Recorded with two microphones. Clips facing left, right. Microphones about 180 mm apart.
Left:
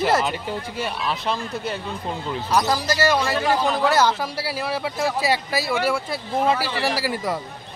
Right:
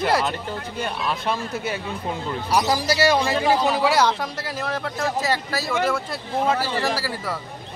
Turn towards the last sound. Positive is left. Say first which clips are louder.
# left 2 dB
turn(degrees=15)  # may be behind; listen again after turning